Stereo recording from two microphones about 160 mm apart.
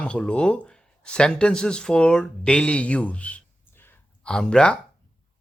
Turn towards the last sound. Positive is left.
turn(degrees=5)  # may be behind; listen again after turning